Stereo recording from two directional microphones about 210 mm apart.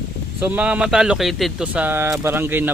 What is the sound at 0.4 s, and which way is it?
Speech, 5° right (ahead or behind).